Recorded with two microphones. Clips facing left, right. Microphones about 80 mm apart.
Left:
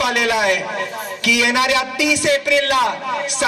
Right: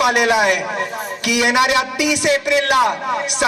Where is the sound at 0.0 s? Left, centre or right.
Right.